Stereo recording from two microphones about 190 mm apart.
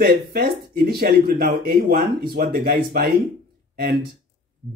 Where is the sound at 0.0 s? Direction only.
55° right (ahead or behind).